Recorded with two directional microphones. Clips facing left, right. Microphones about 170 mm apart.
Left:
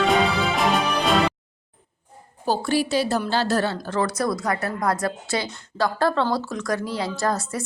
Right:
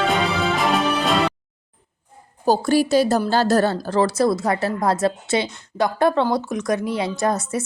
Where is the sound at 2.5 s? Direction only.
40° right (ahead or behind).